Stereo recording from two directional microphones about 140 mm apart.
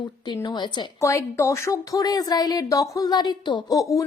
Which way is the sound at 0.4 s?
35° left (ahead or behind).